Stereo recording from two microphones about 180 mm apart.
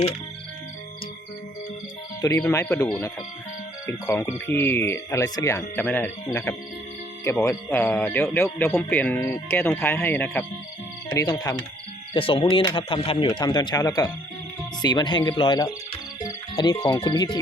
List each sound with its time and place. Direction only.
2.2 s speech: 15° left (ahead or behind)